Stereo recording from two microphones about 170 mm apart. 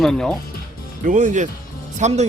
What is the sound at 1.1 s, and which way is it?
A man's voice, 50° right (ahead or behind).